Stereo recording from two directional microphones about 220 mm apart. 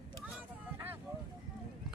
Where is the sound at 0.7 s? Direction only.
10° right (ahead or behind).